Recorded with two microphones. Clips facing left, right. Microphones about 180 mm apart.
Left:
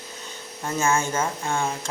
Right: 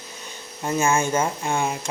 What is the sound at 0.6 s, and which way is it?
Speech, 15° right (ahead or behind).